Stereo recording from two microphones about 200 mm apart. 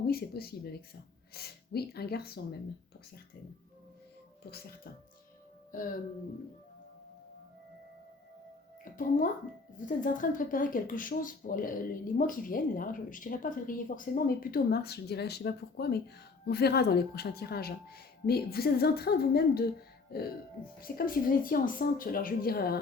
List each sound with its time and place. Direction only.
0.1 s speech: 50° left (ahead or behind)
4.5 s speech: 50° left (ahead or behind)
8.8 s speech: 40° left (ahead or behind)